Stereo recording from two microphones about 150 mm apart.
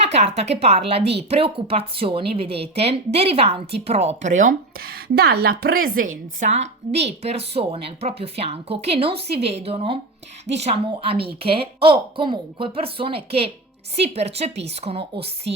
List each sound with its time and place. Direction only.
0.1 s speech: 45° right (ahead or behind)